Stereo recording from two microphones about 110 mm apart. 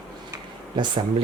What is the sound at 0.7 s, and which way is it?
Speech, 45° right (ahead or behind).